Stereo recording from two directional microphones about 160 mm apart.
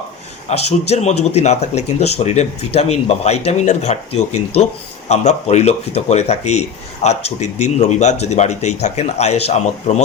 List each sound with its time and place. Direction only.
0.4 s speech: 40° left (ahead or behind)